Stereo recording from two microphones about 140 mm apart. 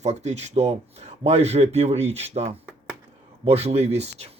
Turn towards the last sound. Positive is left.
turn(degrees=-50)  # may be behind; listen again after turning